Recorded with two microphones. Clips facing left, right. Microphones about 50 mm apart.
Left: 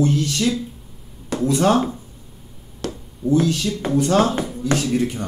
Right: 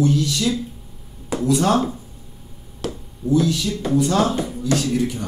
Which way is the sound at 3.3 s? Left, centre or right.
Left.